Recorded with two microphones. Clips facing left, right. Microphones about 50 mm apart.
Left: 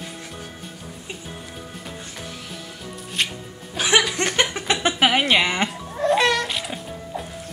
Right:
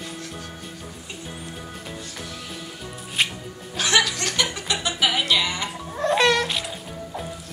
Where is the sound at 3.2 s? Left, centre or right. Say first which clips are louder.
Right 1 dB; centre.